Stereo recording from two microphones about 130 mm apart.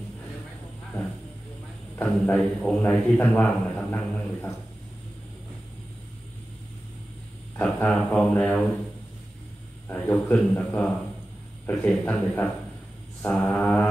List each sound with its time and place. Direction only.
2.0 s a man's voice: 10° left (ahead or behind)
7.5 s speech: 10° left (ahead or behind)
9.8 s a man's voice: 15° left (ahead or behind)